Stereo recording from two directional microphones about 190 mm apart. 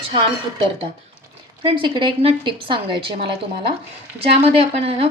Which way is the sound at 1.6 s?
25° right (ahead or behind).